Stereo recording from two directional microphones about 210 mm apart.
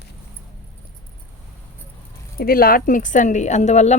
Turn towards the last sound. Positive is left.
turn(degrees=35)  # may be behind; listen again after turning